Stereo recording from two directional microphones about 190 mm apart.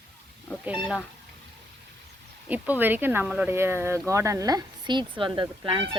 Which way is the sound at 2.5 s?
10° right (ahead or behind).